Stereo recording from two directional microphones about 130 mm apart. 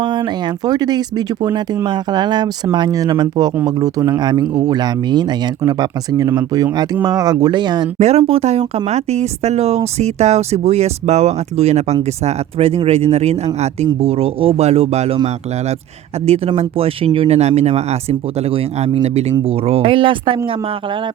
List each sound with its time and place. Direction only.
0.0 s speech: 35° right (ahead or behind)
7.9 s speech: 55° right (ahead or behind)
16.2 s speech: 50° right (ahead or behind)